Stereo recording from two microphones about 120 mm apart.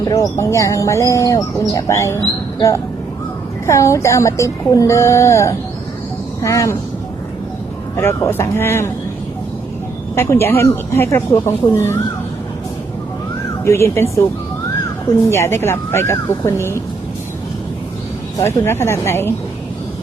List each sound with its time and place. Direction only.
0.1 s speech: 25° left (ahead or behind)
7.9 s speech: 20° left (ahead or behind)
10.2 s speech: 20° left (ahead or behind)
13.7 s speech: 25° left (ahead or behind)
15.3 s speech: 20° left (ahead or behind)
18.3 s speech: 25° left (ahead or behind)